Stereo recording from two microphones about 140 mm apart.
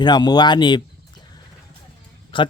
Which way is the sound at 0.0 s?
30° left (ahead or behind).